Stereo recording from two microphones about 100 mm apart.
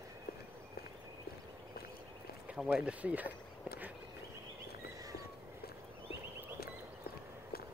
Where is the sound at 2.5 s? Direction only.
10° right (ahead or behind).